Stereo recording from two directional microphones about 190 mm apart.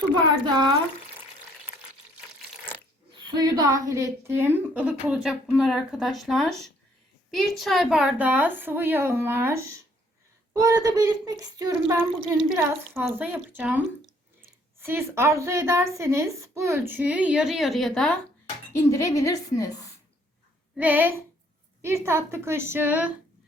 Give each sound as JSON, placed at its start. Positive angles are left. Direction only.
{"t": 0.4, "sound": "speech", "side_deg": -20}
{"t": 3.2, "sound": "a woman's voice", "side_deg": -20}
{"t": 18.9, "sound": "a woman's voice", "side_deg": 15}
{"t": 20.7, "sound": "a woman's voice", "side_deg": -10}